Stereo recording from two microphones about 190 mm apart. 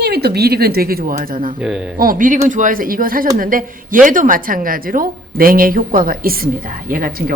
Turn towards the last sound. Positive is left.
turn(degrees=-50)  # may be behind; listen again after turning